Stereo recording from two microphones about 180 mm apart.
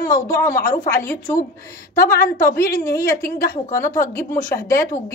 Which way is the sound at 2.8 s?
15° left (ahead or behind).